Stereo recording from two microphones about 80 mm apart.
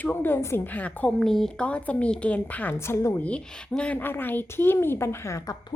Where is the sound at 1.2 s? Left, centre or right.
Centre.